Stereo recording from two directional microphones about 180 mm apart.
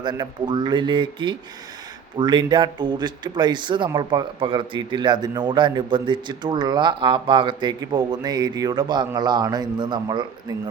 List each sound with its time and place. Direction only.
0.0 s speech: 25° right (ahead or behind)